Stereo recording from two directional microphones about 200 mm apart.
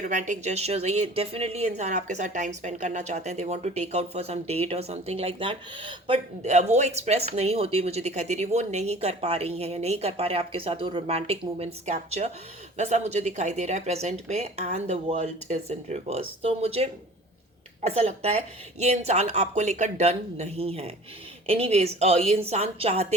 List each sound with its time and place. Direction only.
0.1 s a woman's voice: 35° right (ahead or behind)